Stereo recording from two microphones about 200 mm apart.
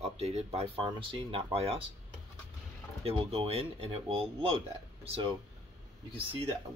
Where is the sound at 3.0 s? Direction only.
30° right (ahead or behind).